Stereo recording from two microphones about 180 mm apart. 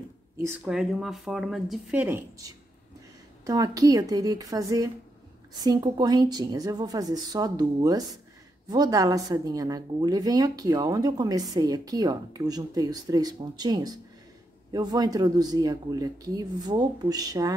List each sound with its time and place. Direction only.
0.7 s speech: 5° right (ahead or behind); by 17.6 s 20° right (ahead or behind)